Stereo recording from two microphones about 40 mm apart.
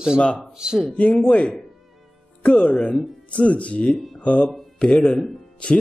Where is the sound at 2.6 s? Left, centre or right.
Left.